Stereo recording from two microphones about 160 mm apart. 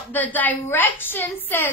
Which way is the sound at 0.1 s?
10° left (ahead or behind).